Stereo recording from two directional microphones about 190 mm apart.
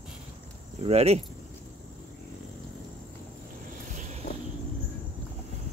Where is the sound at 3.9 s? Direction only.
40° right (ahead or behind).